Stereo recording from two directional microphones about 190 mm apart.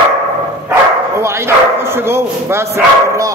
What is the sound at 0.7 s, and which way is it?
Speech, 15° right (ahead or behind).